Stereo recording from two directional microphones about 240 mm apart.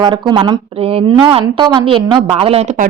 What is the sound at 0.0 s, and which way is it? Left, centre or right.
A woman's voice, centre.